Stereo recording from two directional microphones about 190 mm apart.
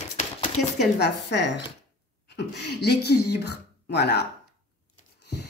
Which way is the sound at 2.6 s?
60° left (ahead or behind).